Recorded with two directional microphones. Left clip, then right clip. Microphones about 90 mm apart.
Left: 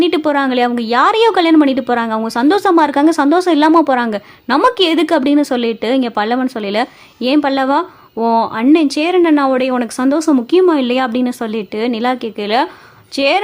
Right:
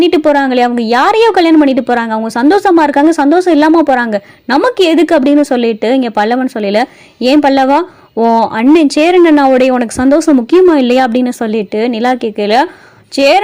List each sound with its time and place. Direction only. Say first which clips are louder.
0.0 s a woman's voice: right 5 dB; 25° right (ahead or behind)